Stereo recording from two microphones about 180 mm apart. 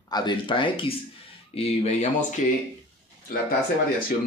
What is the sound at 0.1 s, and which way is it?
Speech, 25° left (ahead or behind).